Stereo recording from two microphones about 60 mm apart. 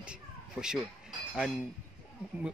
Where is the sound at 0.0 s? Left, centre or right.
Centre.